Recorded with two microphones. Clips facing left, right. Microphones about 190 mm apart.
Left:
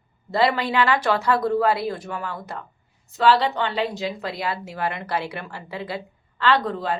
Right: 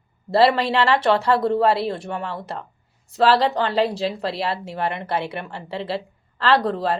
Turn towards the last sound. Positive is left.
turn(degrees=-35)  # may be behind; listen again after turning